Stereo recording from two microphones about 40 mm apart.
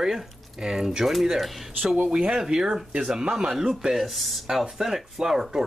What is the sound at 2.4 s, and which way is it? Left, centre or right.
Speech, centre.